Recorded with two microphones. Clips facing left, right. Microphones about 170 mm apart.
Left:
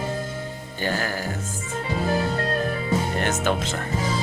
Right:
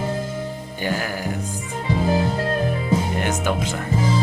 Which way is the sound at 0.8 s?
15° right (ahead or behind).